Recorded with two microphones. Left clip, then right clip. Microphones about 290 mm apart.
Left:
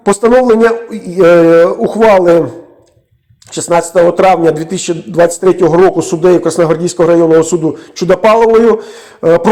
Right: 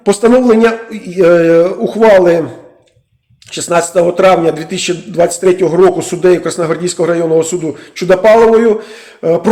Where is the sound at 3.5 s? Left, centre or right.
Centre.